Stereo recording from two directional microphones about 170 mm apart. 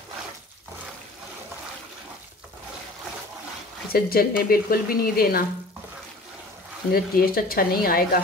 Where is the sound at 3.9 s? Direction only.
65° left (ahead or behind).